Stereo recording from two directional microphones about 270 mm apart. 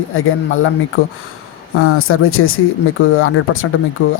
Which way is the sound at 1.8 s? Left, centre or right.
Left.